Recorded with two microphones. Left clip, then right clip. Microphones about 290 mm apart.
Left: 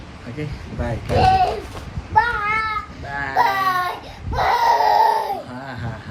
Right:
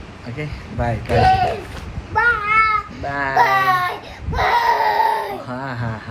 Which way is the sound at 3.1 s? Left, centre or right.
Centre.